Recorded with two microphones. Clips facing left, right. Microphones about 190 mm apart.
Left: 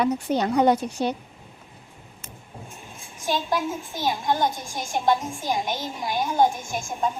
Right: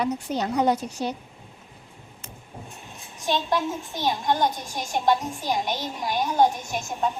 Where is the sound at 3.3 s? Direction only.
Centre (ahead or behind).